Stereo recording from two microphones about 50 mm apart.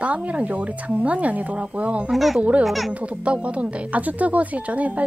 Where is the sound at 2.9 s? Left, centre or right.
Right.